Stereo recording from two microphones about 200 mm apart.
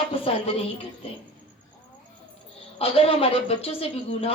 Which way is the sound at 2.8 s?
30° left (ahead or behind).